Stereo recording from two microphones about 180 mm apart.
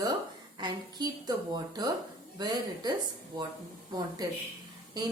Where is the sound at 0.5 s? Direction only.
25° right (ahead or behind).